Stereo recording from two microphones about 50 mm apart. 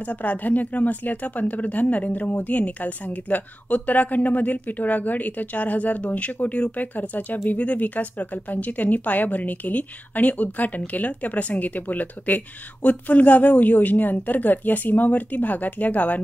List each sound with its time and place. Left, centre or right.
0.1 s a woman's voice: left